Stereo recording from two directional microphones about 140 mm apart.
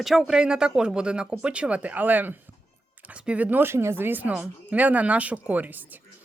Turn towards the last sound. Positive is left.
turn(degrees=-10)  # may be behind; listen again after turning